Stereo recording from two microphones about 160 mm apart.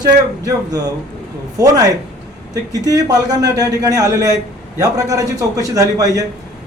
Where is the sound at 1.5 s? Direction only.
20° right (ahead or behind).